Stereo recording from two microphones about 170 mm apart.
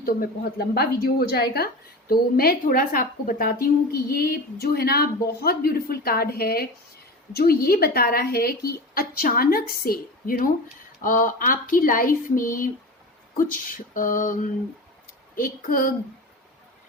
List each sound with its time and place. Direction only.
0.0 s a woman's voice: 60° left (ahead or behind)